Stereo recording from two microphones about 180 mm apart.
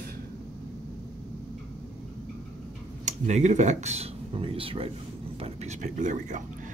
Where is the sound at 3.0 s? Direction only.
40° right (ahead or behind).